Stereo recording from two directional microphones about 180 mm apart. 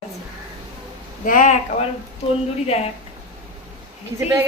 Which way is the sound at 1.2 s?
50° left (ahead or behind).